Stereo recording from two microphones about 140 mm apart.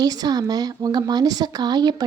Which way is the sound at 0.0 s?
30° right (ahead or behind).